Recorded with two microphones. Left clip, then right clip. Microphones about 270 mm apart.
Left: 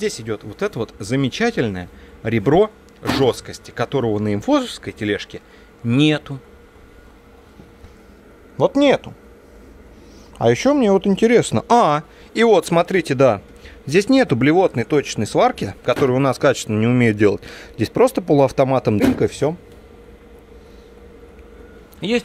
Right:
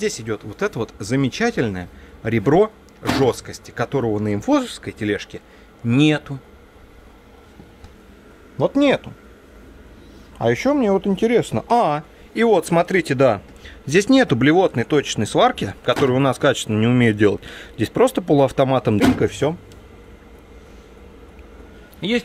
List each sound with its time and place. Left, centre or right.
0.0 s speech: centre
8.7 s speech: centre
10.4 s speech: centre
11.4 s speech: left
12.4 s speech: centre